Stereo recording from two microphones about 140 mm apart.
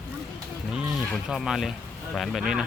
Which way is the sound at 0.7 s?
5° right (ahead or behind).